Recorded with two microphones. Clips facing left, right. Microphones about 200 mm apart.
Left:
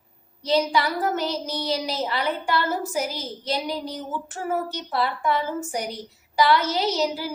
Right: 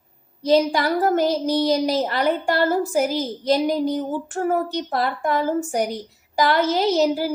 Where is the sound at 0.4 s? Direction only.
50° right (ahead or behind).